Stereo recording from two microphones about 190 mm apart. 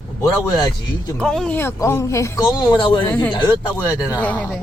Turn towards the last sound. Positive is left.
turn(degrees=10)  # may be behind; listen again after turning